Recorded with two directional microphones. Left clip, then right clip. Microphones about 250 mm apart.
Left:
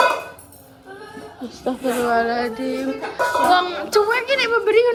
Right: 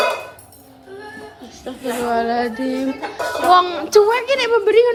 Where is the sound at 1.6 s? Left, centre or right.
Centre.